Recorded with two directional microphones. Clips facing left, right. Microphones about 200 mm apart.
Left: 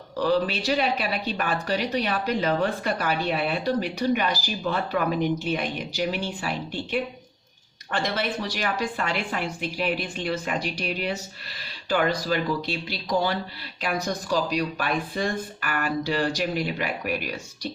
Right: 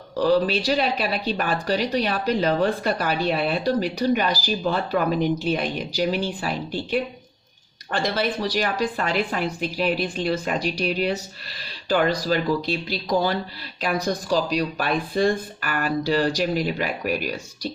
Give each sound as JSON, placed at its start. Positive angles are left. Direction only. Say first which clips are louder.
{"t": 0.2, "sound": "speech", "louder": "right 4 dB", "side_deg": -35}